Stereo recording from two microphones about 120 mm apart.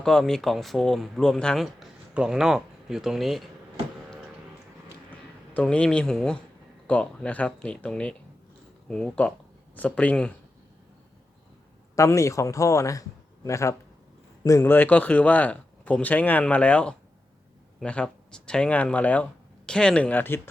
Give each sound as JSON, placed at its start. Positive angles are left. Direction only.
{"t": 0.0, "sound": "speech", "side_deg": 5}
{"t": 5.5, "sound": "speech", "side_deg": 10}
{"t": 11.9, "sound": "a man's voice", "side_deg": 25}